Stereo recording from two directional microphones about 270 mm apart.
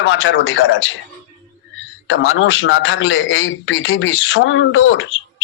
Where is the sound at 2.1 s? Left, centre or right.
Left.